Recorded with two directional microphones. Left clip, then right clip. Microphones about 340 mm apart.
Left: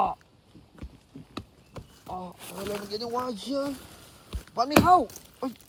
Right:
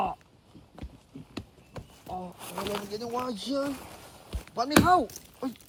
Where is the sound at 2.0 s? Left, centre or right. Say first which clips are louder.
Left 1 dB; centre.